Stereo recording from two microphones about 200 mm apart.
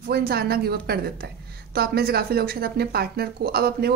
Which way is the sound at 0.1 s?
50° right (ahead or behind).